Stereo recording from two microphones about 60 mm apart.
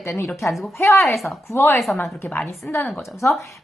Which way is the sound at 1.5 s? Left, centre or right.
Left.